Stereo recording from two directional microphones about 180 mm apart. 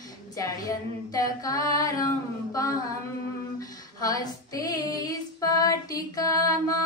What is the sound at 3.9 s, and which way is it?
Female singing, 20° left (ahead or behind).